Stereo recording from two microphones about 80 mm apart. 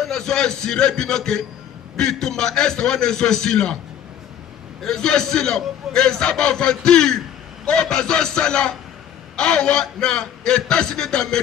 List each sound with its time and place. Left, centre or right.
0.0 s a man's voice: centre
4.8 s a man's voice: centre